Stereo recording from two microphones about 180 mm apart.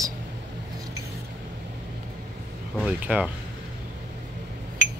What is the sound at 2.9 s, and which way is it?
Speech, 5° right (ahead or behind).